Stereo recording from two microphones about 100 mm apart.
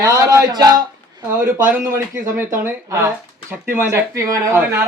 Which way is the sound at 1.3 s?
25° right (ahead or behind).